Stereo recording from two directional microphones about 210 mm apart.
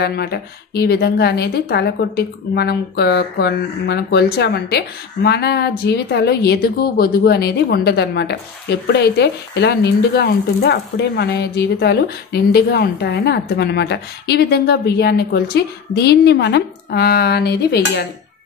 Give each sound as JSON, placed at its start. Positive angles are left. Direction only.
{"t": 0.0, "sound": "speech", "side_deg": 50}